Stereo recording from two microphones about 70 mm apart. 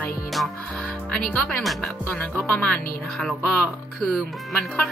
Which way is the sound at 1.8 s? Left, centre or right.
Centre.